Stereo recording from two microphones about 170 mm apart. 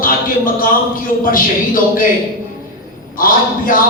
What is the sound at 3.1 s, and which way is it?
Speech, 55° left (ahead or behind).